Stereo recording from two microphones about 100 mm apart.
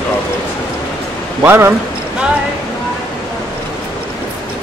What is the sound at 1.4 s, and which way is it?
Speech, 20° right (ahead or behind).